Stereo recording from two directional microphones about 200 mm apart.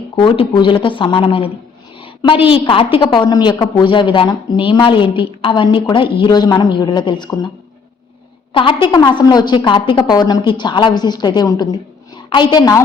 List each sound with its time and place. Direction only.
0.2 s a woman's voice: 25° left (ahead or behind)
8.5 s a woman's voice: 25° left (ahead or behind)